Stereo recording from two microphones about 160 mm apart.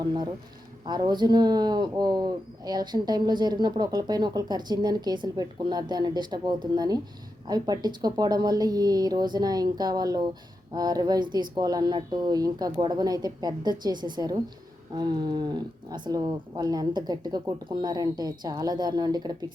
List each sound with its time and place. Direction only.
0.9 s speech: 25° right (ahead or behind)